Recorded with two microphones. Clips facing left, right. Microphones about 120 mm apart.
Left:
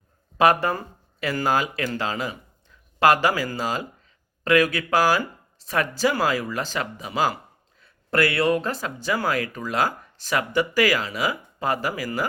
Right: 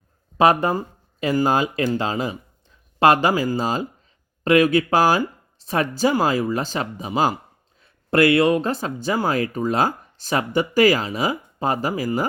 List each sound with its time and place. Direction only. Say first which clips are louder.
0.3 s speech: right 2 dB; 20° right (ahead or behind)